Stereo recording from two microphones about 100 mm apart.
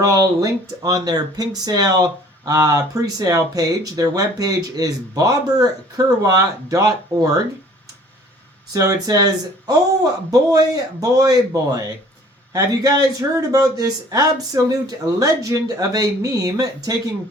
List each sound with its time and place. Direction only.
0.0 s speech: 35° right (ahead or behind)
8.7 s speech: 35° right (ahead or behind)